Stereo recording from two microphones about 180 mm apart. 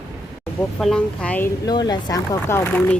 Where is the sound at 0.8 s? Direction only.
5° left (ahead or behind).